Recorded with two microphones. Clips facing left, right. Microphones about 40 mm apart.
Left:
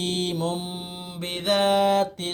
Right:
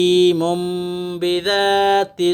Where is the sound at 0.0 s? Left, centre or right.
Right.